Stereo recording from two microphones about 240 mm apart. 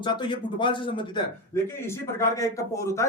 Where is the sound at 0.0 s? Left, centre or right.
Centre.